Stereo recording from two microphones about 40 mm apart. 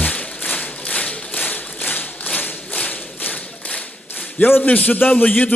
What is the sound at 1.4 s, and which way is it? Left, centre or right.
Tap, left.